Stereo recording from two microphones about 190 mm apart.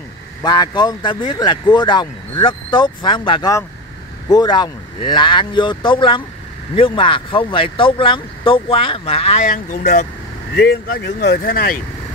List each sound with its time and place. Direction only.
0.4 s speech: 20° left (ahead or behind); by 11.8 s 50° left (ahead or behind)